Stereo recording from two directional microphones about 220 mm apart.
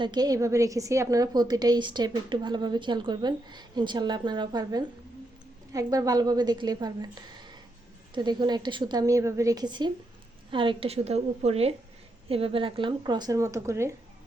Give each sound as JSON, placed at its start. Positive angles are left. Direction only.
{"t": 0.0, "sound": "a woman's voice", "side_deg": -20}
{"t": 8.1, "sound": "a woman's voice", "side_deg": -20}